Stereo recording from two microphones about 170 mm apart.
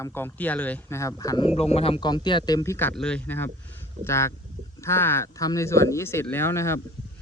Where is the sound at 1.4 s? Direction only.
35° left (ahead or behind).